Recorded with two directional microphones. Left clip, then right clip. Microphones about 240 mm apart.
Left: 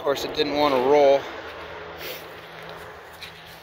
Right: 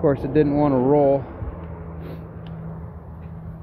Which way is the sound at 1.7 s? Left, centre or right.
Right.